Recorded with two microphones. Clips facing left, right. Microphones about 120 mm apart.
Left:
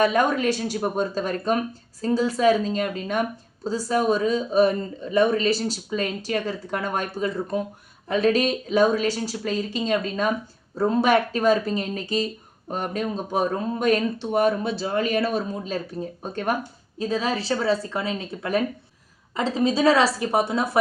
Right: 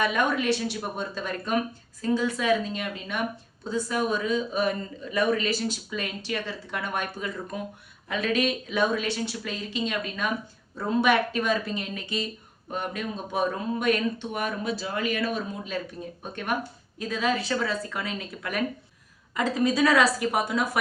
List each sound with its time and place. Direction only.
0.0 s speech: 40° left (ahead or behind)